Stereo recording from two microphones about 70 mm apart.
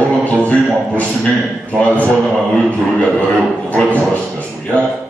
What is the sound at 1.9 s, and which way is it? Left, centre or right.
A man's voice, centre.